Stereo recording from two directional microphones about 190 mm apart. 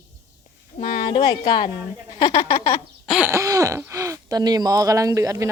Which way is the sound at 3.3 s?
15° right (ahead or behind).